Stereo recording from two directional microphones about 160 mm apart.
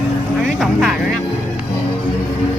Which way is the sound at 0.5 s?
Centre (ahead or behind).